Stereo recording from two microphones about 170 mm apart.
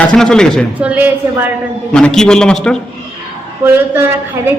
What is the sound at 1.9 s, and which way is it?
Speech, 5° left (ahead or behind).